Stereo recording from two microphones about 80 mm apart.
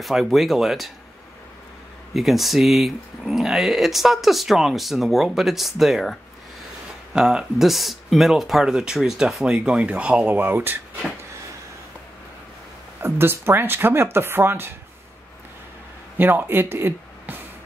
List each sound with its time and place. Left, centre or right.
0.0 s speech: centre
2.1 s speech: centre
7.2 s speech: centre; by 10.8 s right
13.0 s speech: right
16.2 s speech: right